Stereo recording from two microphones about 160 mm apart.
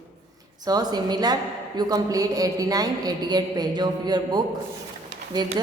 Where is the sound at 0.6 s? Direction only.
25° right (ahead or behind).